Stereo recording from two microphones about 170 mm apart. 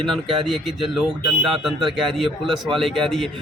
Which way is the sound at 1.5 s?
Centre (ahead or behind).